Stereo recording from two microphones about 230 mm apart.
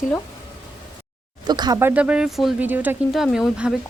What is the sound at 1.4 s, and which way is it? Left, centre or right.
A woman's voice, centre.